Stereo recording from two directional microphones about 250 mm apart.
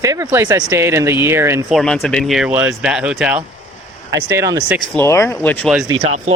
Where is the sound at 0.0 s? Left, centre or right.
Centre.